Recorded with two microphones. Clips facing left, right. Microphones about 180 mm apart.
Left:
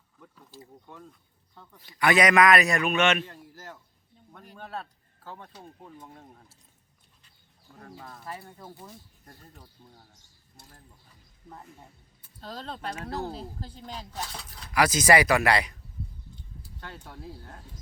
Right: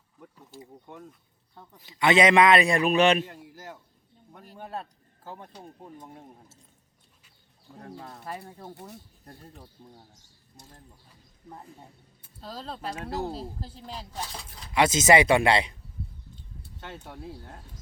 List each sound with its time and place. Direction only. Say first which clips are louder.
0.5 s a man's voice: right 3 dB; 20° right (ahead or behind); by 3.2 s 35° right (ahead or behind)
3.2 s speech: right 2 dB; 15° right (ahead or behind)
7.8 s a man's voice: right 3 dB; 40° right (ahead or behind)
12.4 s speech: even; 5° right (ahead or behind)
14.7 s a man's voice: right 1 dB; 25° right (ahead or behind)
16.8 s a man's voice: right 2 dB; 20° right (ahead or behind)